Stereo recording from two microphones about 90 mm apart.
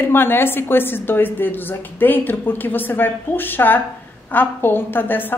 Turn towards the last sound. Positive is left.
turn(degrees=20)  # may be behind; listen again after turning